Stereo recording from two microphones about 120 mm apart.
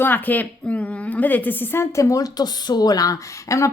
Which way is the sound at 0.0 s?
15° left (ahead or behind).